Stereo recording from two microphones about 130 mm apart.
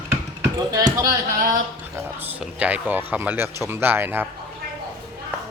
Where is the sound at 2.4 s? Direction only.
10° right (ahead or behind).